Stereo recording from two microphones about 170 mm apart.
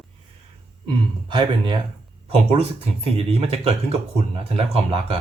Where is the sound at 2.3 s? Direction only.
35° right (ahead or behind).